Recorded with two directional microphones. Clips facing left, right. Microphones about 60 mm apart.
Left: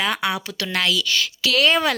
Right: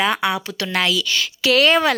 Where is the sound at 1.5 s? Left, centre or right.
Right.